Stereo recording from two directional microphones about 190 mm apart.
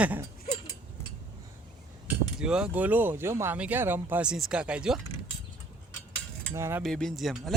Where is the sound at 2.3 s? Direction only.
5° right (ahead or behind).